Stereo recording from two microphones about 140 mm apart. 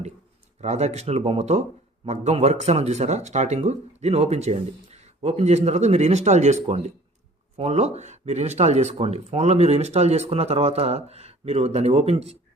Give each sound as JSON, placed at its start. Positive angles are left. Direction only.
{"t": 0.6, "sound": "speech", "side_deg": -50}